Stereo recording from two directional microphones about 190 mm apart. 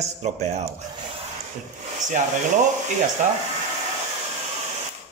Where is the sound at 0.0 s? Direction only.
35° right (ahead or behind).